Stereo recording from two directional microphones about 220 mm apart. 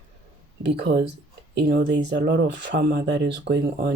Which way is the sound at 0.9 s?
50° right (ahead or behind).